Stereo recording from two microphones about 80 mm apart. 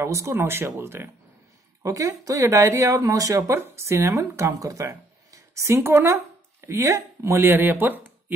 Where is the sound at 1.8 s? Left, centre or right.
Right.